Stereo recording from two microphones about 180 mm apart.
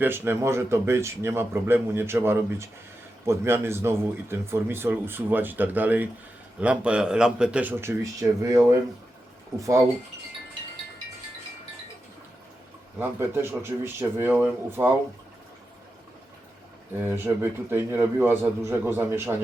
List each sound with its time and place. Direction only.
0.0 s speech: 10° right (ahead or behind)
13.0 s speech: 15° right (ahead or behind)
17.1 s speech: 10° right (ahead or behind)